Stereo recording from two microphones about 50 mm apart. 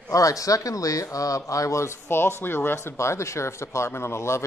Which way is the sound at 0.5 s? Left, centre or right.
Left.